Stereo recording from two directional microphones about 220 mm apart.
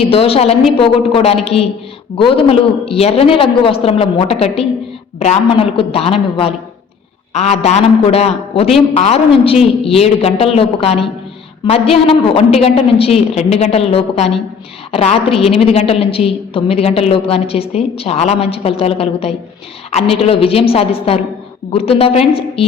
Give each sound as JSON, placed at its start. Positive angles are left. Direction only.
{"t": 0.0, "sound": "a woman's voice", "side_deg": 25}